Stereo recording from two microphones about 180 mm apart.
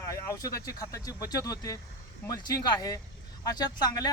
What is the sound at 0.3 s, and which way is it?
Speech, 20° left (ahead or behind).